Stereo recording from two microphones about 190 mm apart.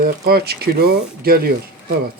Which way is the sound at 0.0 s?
55° right (ahead or behind).